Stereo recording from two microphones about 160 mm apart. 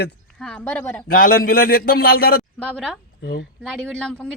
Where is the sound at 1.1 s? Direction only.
60° left (ahead or behind).